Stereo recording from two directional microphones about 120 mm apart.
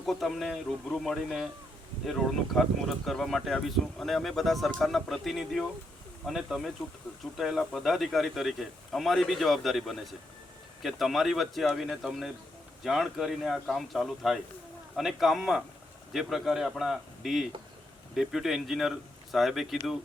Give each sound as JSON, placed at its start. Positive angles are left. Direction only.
{"t": 0.0, "sound": "speech", "side_deg": 0}